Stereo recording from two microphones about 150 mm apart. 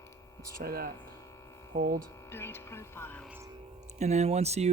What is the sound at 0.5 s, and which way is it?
Speech, 90° right.